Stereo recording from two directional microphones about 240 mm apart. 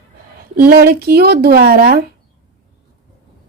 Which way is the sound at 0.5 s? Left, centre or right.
Right.